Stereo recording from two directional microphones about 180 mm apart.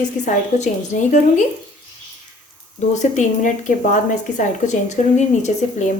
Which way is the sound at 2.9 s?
40° left (ahead or behind).